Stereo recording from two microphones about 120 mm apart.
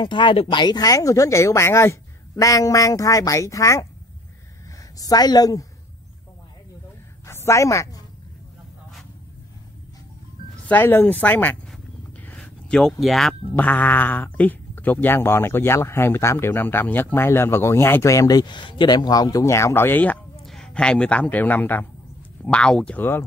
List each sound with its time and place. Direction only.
0.0 s speech: 40° left (ahead or behind); by 3.8 s 25° left (ahead or behind)
4.9 s a woman's voice: 30° left (ahead or behind)
7.2 s a woman's voice: 25° left (ahead or behind)
10.7 s speech: 15° left (ahead or behind)
12.3 s a sound: 5° left (ahead or behind)
13.0 s speech: centre (ahead or behind)
13.6 s speech: 15° left (ahead or behind)
20.4 s speech: 5° left (ahead or behind)